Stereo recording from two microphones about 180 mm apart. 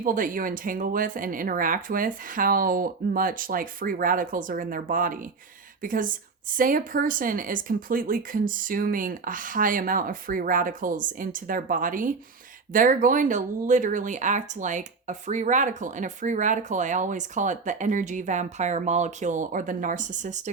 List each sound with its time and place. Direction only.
0.0 s speech: 50° right (ahead or behind)